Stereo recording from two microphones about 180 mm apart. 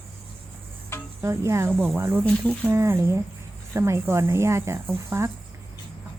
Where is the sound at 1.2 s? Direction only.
15° right (ahead or behind).